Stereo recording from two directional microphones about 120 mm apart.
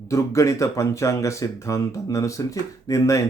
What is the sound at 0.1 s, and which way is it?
Speech, 25° left (ahead or behind).